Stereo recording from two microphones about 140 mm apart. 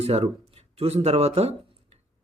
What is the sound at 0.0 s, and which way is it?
Speech, 45° right (ahead or behind).